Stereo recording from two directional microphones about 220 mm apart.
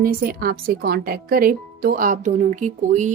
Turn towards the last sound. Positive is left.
turn(degrees=-35)  # may be behind; listen again after turning